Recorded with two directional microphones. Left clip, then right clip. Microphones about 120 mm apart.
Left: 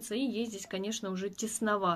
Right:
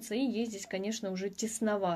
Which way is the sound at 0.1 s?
90° right.